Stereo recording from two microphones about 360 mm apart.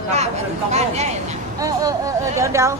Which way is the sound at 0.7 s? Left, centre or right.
Centre.